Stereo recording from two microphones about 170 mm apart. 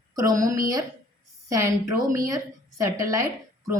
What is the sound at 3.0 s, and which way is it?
Speech, 20° right (ahead or behind).